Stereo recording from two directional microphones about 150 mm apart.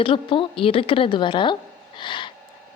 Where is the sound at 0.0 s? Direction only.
35° left (ahead or behind).